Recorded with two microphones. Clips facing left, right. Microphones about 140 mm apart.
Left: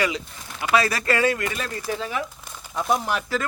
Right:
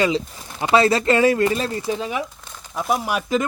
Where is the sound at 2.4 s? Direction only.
5° left (ahead or behind); by 3.4 s 15° right (ahead or behind).